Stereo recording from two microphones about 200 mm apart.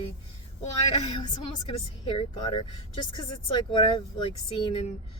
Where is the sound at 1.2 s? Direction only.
20° left (ahead or behind).